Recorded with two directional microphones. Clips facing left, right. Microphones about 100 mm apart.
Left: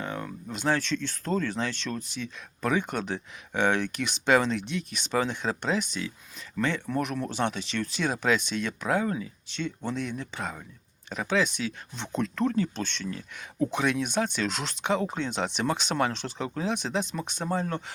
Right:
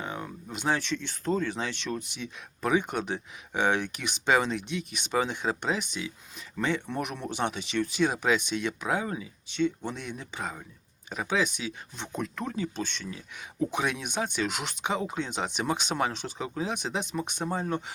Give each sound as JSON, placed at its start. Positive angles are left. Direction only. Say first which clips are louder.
{"t": 0.0, "sound": "speech", "louder": "left 2 dB", "side_deg": -15}